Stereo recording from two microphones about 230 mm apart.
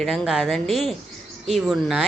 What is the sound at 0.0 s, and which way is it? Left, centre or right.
Speech, centre.